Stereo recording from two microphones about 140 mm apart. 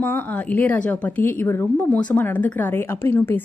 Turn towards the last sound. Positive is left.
turn(degrees=15)  # may be behind; listen again after turning